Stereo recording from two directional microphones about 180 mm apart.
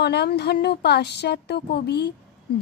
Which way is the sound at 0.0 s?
65° left (ahead or behind).